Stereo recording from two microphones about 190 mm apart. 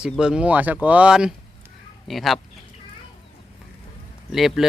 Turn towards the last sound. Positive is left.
turn(degrees=0)  # may be behind; listen again after turning